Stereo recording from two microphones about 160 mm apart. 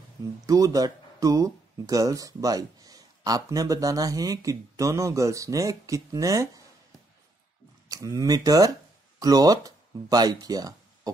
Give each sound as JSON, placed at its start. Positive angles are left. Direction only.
{"t": 0.2, "sound": "speech", "side_deg": -20}
{"t": 7.9, "sound": "speech", "side_deg": -20}